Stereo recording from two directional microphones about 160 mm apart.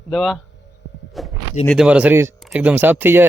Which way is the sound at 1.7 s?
5° right (ahead or behind).